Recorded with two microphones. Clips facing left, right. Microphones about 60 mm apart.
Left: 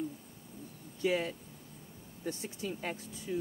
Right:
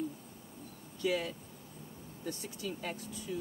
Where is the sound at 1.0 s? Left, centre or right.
Left.